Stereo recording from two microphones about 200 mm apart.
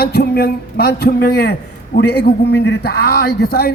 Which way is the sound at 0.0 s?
55° left (ahead or behind).